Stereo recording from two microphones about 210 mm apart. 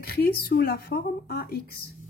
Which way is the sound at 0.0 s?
45° left (ahead or behind).